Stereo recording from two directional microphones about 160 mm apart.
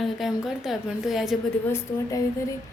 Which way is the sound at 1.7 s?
20° left (ahead or behind).